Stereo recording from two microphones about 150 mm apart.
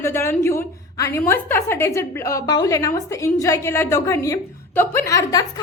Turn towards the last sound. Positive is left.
turn(degrees=25)  # may be behind; listen again after turning